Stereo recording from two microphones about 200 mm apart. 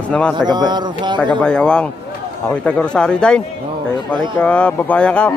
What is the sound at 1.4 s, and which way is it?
Speech, 5° left (ahead or behind).